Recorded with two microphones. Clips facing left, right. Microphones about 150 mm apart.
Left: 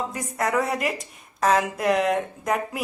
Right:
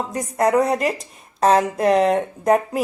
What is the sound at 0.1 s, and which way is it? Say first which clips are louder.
A woman's voice: right 7 dB; 35° right (ahead or behind).